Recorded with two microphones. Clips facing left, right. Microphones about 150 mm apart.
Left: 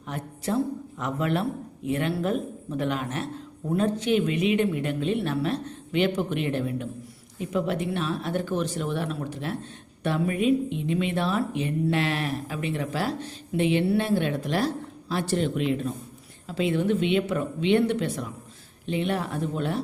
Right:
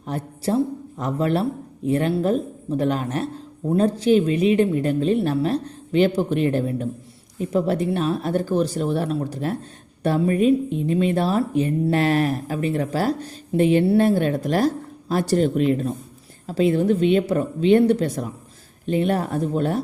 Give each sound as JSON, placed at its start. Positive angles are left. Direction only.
{"t": 0.1, "sound": "a man's voice", "side_deg": -35}